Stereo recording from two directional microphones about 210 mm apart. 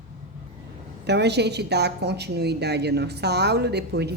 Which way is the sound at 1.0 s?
55° right (ahead or behind).